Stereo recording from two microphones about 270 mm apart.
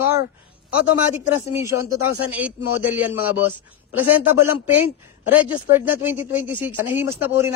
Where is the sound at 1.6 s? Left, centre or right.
Centre.